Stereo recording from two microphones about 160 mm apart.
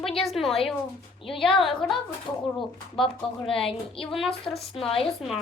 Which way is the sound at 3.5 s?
35° left (ahead or behind).